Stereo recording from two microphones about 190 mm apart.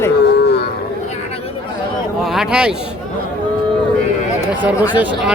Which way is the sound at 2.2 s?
5° right (ahead or behind).